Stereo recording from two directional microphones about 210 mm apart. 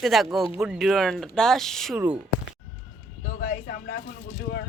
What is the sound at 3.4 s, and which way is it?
Speech, 45° left (ahead or behind).